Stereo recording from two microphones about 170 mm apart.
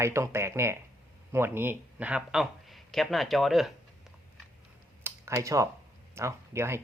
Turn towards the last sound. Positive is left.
turn(degrees=-15)  # may be behind; listen again after turning